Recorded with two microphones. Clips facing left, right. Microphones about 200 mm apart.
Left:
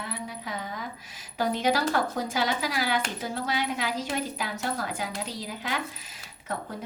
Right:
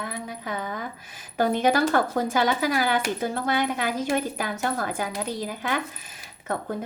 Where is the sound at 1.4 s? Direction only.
50° right (ahead or behind).